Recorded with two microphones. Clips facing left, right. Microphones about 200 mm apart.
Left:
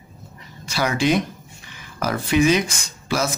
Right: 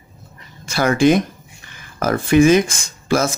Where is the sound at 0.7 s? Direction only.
50° right (ahead or behind).